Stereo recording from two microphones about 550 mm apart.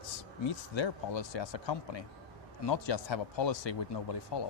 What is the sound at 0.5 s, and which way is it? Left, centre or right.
Speech, left.